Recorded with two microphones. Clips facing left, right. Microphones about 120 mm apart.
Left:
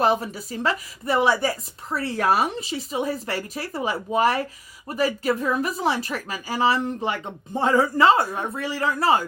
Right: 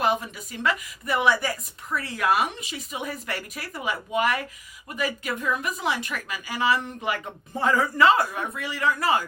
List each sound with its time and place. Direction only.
0.0 s a woman's voice: 35° left (ahead or behind)